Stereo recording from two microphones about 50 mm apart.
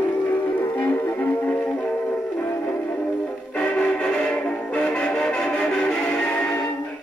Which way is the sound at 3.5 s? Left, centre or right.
Left.